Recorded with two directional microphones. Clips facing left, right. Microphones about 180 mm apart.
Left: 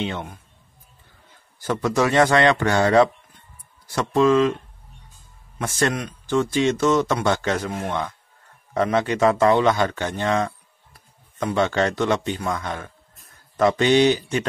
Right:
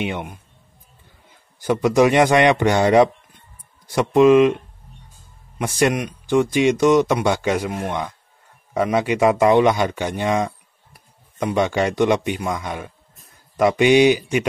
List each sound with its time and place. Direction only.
0.0 s speech: 15° right (ahead or behind)
1.6 s speech: 15° right (ahead or behind)
5.6 s speech: 15° right (ahead or behind)